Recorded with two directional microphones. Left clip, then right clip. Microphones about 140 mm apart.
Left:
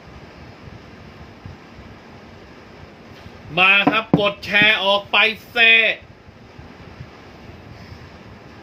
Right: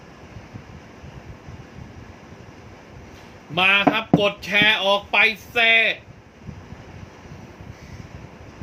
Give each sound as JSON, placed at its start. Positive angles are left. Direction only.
{"t": 3.5, "sound": "speech", "side_deg": -20}